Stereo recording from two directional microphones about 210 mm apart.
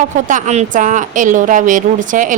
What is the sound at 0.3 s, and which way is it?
A woman's voice, 35° right (ahead or behind).